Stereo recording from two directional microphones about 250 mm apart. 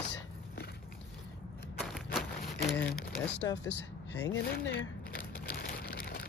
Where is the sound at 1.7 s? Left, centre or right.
Centre.